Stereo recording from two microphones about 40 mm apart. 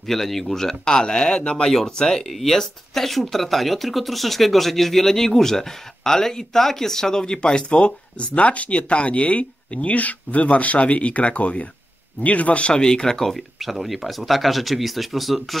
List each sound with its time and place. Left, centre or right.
0.0 s speech: centre; by 1.7 s left
1.7 s speech: centre
2.2 s speech: centre
13.6 s speech: centre